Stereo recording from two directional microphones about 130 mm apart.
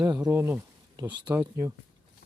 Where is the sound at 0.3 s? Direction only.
20° right (ahead or behind).